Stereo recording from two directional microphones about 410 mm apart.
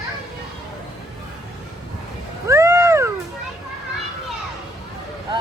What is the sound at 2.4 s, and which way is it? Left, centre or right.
Cat, centre.